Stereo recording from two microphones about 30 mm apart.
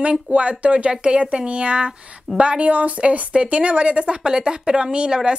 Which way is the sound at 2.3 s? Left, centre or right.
Centre.